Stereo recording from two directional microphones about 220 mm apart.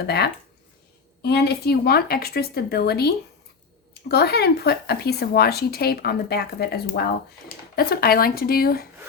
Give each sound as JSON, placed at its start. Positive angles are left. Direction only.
{"t": 1.2, "sound": "speech", "side_deg": 45}
{"t": 4.1, "sound": "speech", "side_deg": 45}